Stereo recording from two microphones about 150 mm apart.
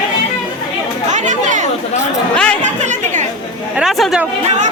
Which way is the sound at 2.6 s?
55° right (ahead or behind).